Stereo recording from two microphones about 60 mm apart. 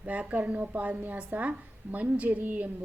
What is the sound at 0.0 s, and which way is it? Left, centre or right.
A woman's voice, right.